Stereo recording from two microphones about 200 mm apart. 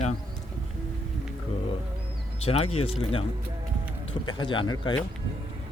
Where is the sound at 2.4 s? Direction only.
30° left (ahead or behind).